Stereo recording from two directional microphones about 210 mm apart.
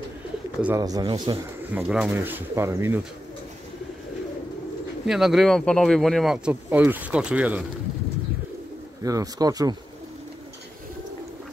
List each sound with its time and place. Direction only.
0.6 s speech: 5° right (ahead or behind)
0.8 s speech: 20° right (ahead or behind)
1.7 s speech: 5° right (ahead or behind)
5.0 s speech: centre (ahead or behind)
9.0 s speech: 15° right (ahead or behind)